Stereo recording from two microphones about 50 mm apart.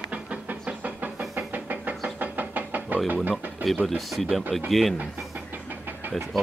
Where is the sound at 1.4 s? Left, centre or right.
Right.